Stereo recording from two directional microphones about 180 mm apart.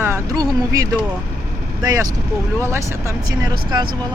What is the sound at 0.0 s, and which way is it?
Speech, 15° right (ahead or behind).